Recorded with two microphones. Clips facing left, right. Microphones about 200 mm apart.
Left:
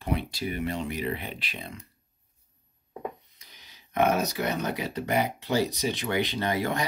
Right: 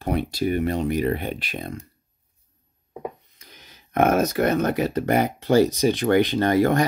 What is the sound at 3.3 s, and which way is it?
Speech, 50° right (ahead or behind).